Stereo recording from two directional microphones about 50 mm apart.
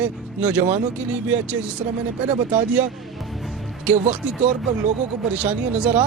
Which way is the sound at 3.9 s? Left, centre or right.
Right.